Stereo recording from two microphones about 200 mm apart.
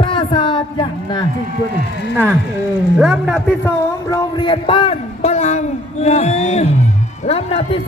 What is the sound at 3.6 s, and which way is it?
A man's voice, 20° left (ahead or behind).